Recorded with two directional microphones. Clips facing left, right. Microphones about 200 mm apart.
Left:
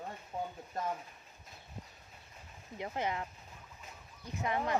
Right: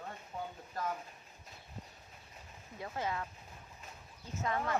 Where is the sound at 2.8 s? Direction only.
20° left (ahead or behind).